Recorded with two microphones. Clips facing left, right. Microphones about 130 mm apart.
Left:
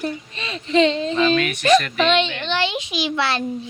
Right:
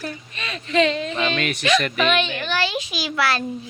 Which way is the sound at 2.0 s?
25° left (ahead or behind).